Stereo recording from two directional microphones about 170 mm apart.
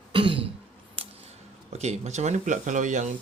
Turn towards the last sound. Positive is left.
turn(degrees=-45)  # may be behind; listen again after turning